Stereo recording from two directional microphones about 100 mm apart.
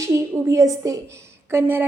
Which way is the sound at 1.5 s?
20° right (ahead or behind).